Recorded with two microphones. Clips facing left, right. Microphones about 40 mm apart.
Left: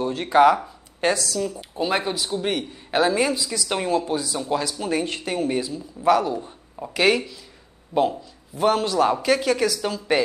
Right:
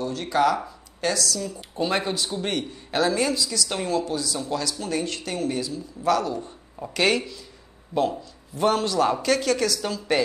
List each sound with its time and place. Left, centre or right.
0.0 s a man's voice: left
1.6 s a man's voice: centre
7.9 s a man's voice: centre
8.5 s speech: centre